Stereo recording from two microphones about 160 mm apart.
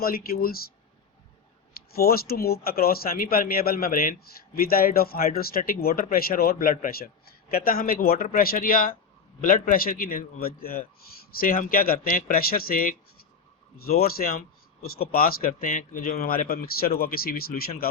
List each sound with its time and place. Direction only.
0.0 s speech: 65° left (ahead or behind)
1.9 s speech: 70° left (ahead or behind)